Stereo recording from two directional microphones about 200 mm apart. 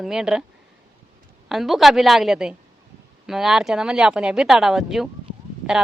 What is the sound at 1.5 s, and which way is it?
Speech, centre (ahead or behind).